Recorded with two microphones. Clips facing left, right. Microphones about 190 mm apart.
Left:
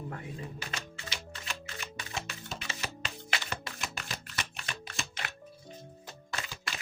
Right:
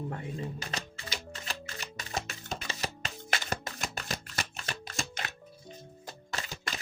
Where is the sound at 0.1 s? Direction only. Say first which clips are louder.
Right 4 dB; 25° right (ahead or behind).